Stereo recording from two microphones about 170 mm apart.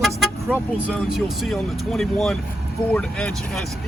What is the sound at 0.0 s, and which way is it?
Speech, centre (ahead or behind).